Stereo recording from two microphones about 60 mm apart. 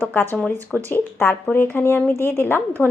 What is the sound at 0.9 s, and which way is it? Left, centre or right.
Speech, left.